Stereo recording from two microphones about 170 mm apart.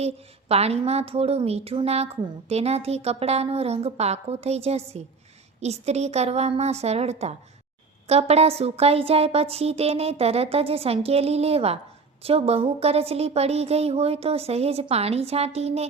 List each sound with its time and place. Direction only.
0.0 s a woman's voice: 35° right (ahead or behind)